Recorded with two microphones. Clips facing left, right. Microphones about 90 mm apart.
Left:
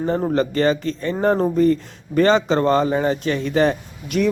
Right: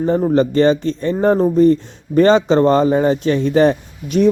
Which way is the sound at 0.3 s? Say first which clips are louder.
Right 6 dB; 30° right (ahead or behind).